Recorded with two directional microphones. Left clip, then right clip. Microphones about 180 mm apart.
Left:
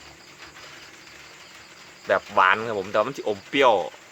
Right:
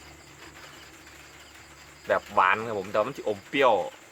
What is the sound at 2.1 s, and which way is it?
Speech, 25° left (ahead or behind).